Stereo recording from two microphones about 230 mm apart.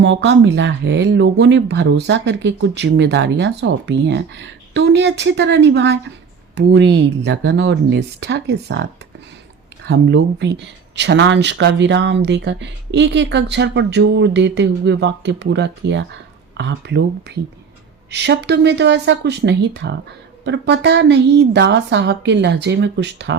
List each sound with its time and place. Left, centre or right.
0.0 s speech: right
9.9 s speech: right